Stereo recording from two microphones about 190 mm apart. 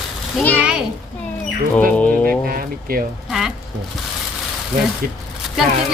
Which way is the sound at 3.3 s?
5° right (ahead or behind).